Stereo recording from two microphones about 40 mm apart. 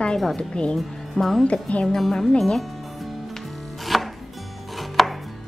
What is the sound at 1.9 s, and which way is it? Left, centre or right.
Music, centre.